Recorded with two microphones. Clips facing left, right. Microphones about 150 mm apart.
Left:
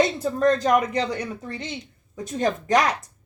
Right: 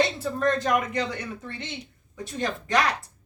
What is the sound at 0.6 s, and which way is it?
Speech, 40° left (ahead or behind).